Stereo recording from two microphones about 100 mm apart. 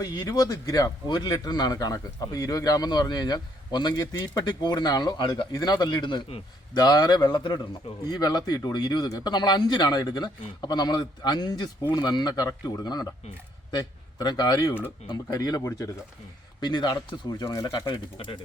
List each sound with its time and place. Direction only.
0.0 s a man's voice: 40° left (ahead or behind)
14.7 s speech: 20° left (ahead or behind)
15.0 s speech: 40° left (ahead or behind)
16.6 s a man's voice: 50° left (ahead or behind)